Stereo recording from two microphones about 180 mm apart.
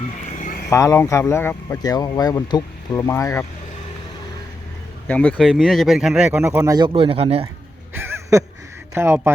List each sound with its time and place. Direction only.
0.7 s speech: 15° left (ahead or behind)
5.0 s speech: 10° left (ahead or behind); by 7.4 s 35° right (ahead or behind)
7.9 s a sound: 15° right (ahead or behind)
9.0 s speech: 15° right (ahead or behind)